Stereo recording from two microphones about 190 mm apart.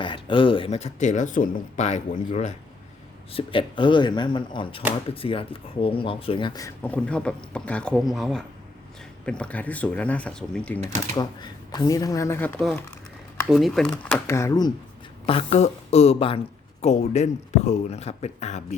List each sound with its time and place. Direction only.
0.0 s speech: 25° left (ahead or behind)
3.3 s speech: 25° left (ahead or behind)
6.8 s speech: 5° left (ahead or behind)
11.1 s speech: 20° left (ahead or behind); by 13.9 s centre (ahead or behind)
14.0 s speech: 10° left (ahead or behind)
15.3 s speech: 30° left (ahead or behind)